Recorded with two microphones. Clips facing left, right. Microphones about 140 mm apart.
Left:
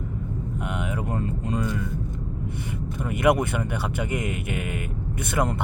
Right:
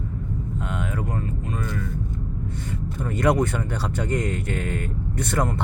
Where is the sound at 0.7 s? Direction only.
15° left (ahead or behind).